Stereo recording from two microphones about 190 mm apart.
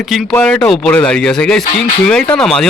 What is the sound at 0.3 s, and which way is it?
A man's voice, 5° left (ahead or behind).